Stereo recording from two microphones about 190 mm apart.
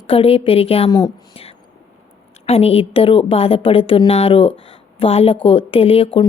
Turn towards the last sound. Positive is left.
turn(degrees=30)  # may be behind; listen again after turning